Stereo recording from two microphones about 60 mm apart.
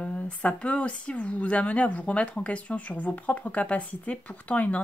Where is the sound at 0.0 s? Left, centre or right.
Left.